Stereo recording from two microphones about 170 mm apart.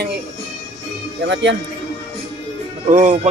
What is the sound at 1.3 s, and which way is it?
Speech, 90° right.